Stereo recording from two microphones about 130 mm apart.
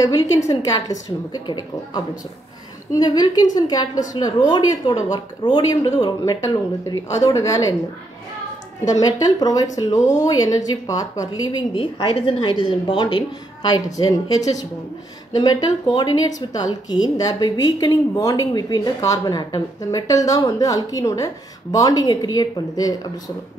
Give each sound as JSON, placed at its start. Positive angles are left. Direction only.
{"t": 0.0, "sound": "a woman's voice", "side_deg": 25}
{"t": 2.9, "sound": "a woman's voice", "side_deg": 30}
{"t": 8.9, "sound": "a woman's voice", "side_deg": 30}
{"t": 15.6, "sound": "a woman's voice", "side_deg": 30}